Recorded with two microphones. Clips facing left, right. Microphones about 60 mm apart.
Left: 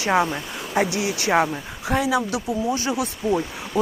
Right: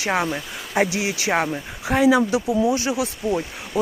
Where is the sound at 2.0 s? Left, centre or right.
Right.